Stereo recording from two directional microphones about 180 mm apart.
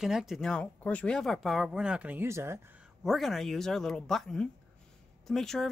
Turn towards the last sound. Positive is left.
turn(degrees=0)  # may be behind; listen again after turning